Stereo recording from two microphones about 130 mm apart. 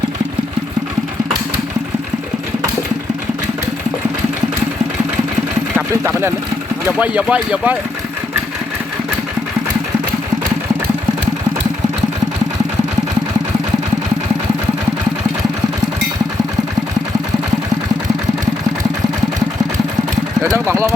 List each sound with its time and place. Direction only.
5.7 s speech: 20° right (ahead or behind)
20.7 s speech: 20° right (ahead or behind)